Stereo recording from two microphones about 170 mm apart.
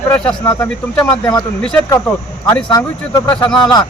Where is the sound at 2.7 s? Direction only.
25° left (ahead or behind).